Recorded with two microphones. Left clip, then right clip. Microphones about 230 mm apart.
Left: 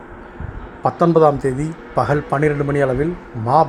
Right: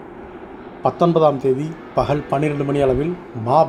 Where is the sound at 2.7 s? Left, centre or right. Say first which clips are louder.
Even; left.